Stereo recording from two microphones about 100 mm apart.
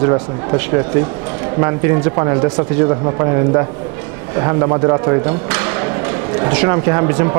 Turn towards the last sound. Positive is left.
turn(degrees=-30)  # may be behind; listen again after turning